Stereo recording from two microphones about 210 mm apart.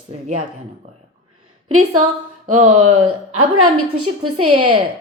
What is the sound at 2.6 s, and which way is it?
A woman's voice, 90° right.